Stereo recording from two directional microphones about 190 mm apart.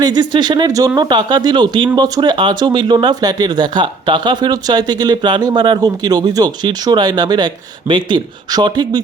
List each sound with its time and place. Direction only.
0.0 s speech: 20° right (ahead or behind)